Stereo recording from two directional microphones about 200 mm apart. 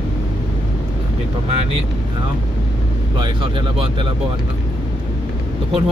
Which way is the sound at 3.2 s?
25° right (ahead or behind).